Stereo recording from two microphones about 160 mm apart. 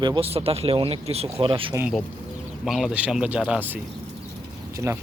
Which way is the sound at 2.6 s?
Centre (ahead or behind).